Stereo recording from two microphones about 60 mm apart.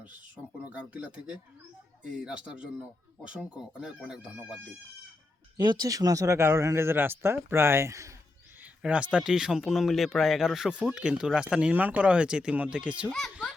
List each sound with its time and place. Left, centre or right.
0.6 s a man's voice: right
5.8 s speech: right
8.8 s a man's voice: right
9.3 s a man's voice: centre
13.1 s speech: centre